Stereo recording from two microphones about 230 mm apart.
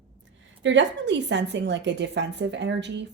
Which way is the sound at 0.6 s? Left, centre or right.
Right.